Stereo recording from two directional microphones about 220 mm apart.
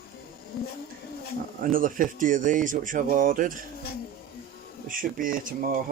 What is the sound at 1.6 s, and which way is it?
Speech, 40° right (ahead or behind).